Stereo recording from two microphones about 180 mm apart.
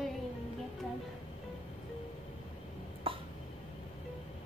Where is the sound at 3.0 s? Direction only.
30° right (ahead or behind).